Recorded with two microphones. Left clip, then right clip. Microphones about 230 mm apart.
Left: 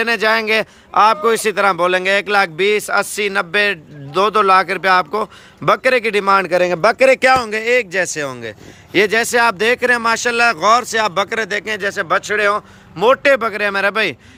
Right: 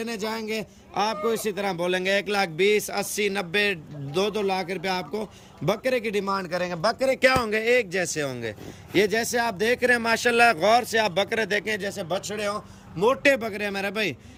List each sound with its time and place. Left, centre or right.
0.0 s speech: centre
6.2 s a man's voice: left
7.2 s speech: centre